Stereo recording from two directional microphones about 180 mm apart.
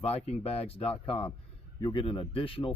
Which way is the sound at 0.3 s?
35° left (ahead or behind).